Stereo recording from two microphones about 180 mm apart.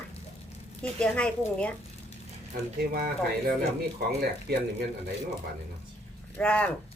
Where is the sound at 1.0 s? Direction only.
5° left (ahead or behind).